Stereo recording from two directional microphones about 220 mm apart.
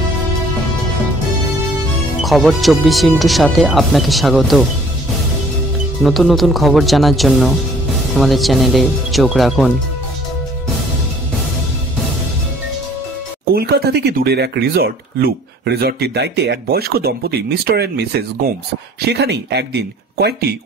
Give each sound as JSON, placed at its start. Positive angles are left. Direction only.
{"t": 2.2, "sound": "speech", "side_deg": 0}
{"t": 6.0, "sound": "speech", "side_deg": 0}
{"t": 13.6, "sound": "speech", "side_deg": -45}